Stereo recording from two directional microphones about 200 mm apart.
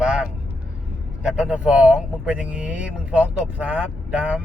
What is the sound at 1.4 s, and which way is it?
A man's voice, 5° right (ahead or behind).